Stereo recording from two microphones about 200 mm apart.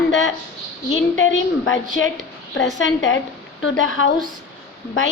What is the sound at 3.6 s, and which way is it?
Speech, 75° left (ahead or behind).